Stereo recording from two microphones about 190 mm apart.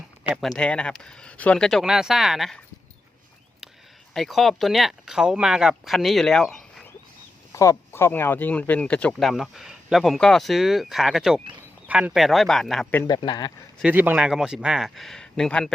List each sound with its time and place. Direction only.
0.4 s speech: 5° left (ahead or behind)
4.1 s speech: centre (ahead or behind)
7.5 s speech: 15° left (ahead or behind)
13.1 s speech: 25° left (ahead or behind)
13.8 s speech: 10° right (ahead or behind)